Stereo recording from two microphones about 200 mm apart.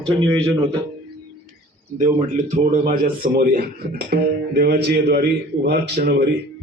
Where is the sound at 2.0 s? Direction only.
35° right (ahead or behind).